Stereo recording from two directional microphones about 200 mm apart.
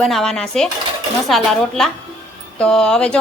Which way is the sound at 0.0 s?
Centre (ahead or behind).